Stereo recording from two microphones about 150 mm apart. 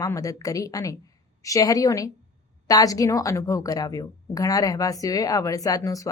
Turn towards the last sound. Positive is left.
turn(degrees=20)  # may be behind; listen again after turning